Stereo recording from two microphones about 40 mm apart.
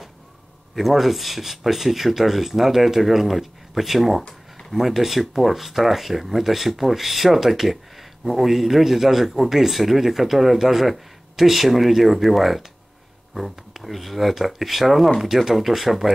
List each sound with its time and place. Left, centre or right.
0.7 s speech: centre